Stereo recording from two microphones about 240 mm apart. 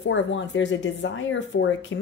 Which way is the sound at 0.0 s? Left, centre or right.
Left.